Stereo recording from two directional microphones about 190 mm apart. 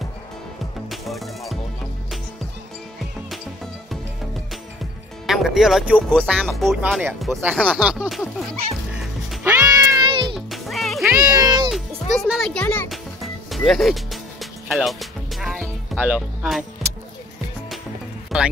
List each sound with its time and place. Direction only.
0.8 s music: centre (ahead or behind)
5.2 s speech: centre (ahead or behind)
8.9 s music: centre (ahead or behind); by 10.2 s 25° right (ahead or behind)
10.3 s music: centre (ahead or behind)
11.3 s music: 20° right (ahead or behind)
11.7 s music: centre (ahead or behind)
16.0 s speech: 5° right (ahead or behind)
18.3 s a sound: centre (ahead or behind)